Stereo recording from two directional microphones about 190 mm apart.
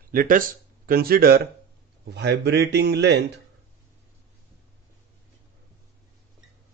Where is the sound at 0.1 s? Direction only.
50° right (ahead or behind).